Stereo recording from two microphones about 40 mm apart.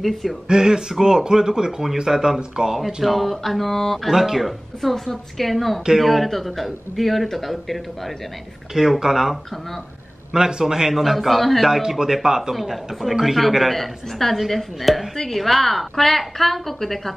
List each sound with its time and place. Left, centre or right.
0.0 s a woman's voice: centre
0.5 s a man's voice: centre
4.1 s a woman's voice: centre
10.3 s a man's voice: centre
12.0 s a man's voice: centre
12.5 s a woman's voice: centre